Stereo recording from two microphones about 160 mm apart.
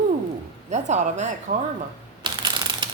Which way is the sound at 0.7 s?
45° right (ahead or behind).